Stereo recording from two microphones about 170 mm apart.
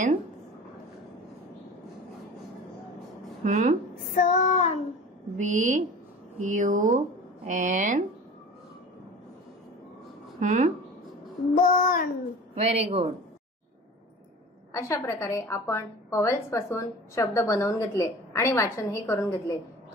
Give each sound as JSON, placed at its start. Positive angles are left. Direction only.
{"t": 3.4, "sound": "speech", "side_deg": -50}
{"t": 4.1, "sound": "child singing", "side_deg": 50}
{"t": 5.4, "sound": "speech", "side_deg": -45}
{"t": 10.4, "sound": "speech", "side_deg": -50}
{"t": 11.5, "sound": "child singing", "side_deg": 50}
{"t": 12.6, "sound": "speech", "side_deg": -40}
{"t": 14.7, "sound": "a woman's voice", "side_deg": 15}